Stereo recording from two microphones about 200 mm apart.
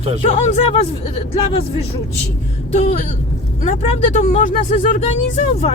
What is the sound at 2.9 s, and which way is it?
Speech, 35° left (ahead or behind).